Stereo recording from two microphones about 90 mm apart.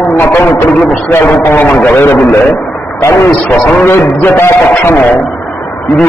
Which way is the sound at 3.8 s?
25° left (ahead or behind).